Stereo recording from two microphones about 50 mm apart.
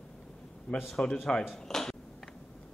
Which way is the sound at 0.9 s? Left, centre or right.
Centre.